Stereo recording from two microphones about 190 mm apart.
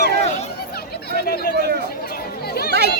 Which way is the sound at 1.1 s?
55° left (ahead or behind).